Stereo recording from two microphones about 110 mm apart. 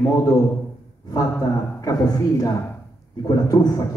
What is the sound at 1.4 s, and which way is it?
A man's voice, 35° left (ahead or behind).